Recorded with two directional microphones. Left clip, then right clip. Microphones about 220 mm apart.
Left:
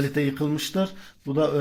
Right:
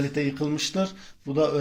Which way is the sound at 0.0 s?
25° left (ahead or behind).